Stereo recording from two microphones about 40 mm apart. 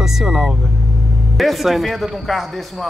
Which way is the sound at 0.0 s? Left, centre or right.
Centre.